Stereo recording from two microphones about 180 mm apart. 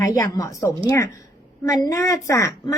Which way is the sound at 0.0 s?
20° left (ahead or behind).